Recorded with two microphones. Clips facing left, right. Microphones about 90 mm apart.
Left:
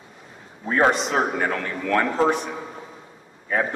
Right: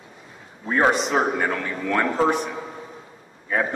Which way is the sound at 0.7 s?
Centre (ahead or behind).